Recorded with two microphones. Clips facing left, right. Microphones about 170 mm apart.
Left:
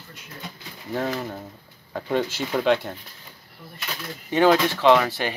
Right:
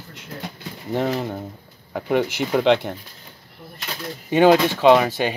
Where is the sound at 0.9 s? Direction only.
20° right (ahead or behind).